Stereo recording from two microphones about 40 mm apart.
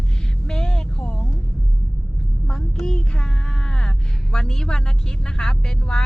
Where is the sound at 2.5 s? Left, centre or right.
Centre.